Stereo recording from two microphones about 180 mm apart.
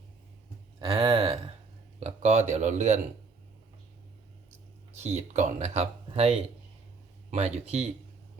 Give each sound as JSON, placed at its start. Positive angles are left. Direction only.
{"t": 0.8, "sound": "speech", "side_deg": -25}
{"t": 2.0, "sound": "speech", "side_deg": -40}
{"t": 4.9, "sound": "speech", "side_deg": -35}